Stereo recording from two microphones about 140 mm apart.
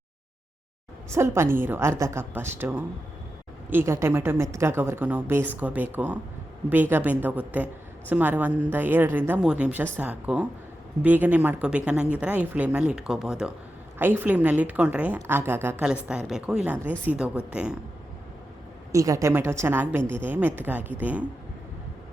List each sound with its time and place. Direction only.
1.1 s a woman's voice: 20° right (ahead or behind)
18.9 s a woman's voice: 25° right (ahead or behind)